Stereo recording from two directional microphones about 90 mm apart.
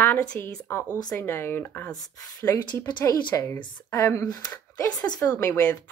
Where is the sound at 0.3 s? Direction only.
20° left (ahead or behind).